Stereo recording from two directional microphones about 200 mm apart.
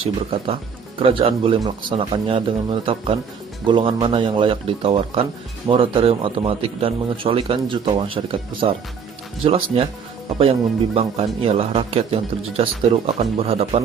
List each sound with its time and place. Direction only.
0.3 s speech: 25° right (ahead or behind)
11.0 s a man's voice: 30° right (ahead or behind)